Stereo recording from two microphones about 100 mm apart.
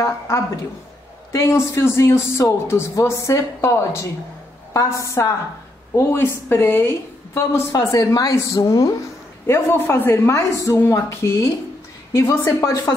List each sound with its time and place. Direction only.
1.3 s a woman's voice: 30° left (ahead or behind)
9.5 s a woman's voice: 25° left (ahead or behind)